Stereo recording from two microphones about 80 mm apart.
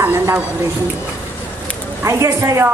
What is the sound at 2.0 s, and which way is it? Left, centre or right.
Speech, right.